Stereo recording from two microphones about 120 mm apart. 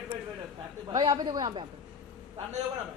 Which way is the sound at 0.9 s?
35° right (ahead or behind).